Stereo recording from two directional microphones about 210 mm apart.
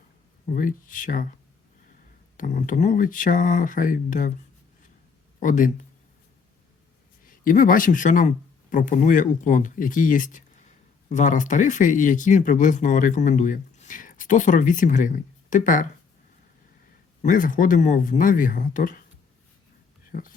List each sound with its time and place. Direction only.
0.5 s speech: 40° left (ahead or behind)
2.4 s speech: 35° left (ahead or behind)
5.4 s speech: 40° left (ahead or behind)
7.3 s speech: 40° left (ahead or behind)
17.2 s speech: 40° left (ahead or behind)